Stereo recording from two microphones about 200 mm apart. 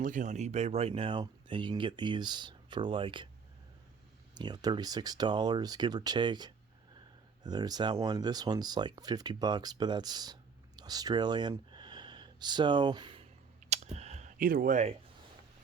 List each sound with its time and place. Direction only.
0.0 s speech: 40° right (ahead or behind); by 3.2 s 25° right (ahead or behind)
4.4 s speech: 20° right (ahead or behind)
10.8 s a sound: 20° right (ahead or behind)
13.7 s computer keyboard: 35° right (ahead or behind)